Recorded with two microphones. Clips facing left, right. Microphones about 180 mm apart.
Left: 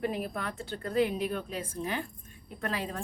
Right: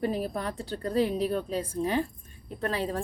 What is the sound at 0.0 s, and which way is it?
A woman's voice, 35° right (ahead or behind).